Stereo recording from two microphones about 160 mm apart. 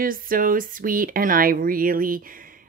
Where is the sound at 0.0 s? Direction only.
60° right (ahead or behind).